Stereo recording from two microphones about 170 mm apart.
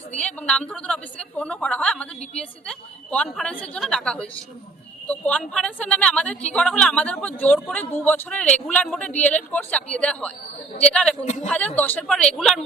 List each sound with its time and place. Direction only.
0.2 s a man's voice: 5° left (ahead or behind)
11.2 s a man's voice: 45° left (ahead or behind)
11.4 s a woman's voice: 10° left (ahead or behind)